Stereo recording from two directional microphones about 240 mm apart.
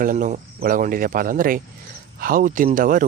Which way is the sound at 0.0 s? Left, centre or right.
Right.